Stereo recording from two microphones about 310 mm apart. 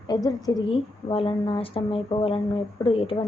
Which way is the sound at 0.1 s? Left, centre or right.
Centre.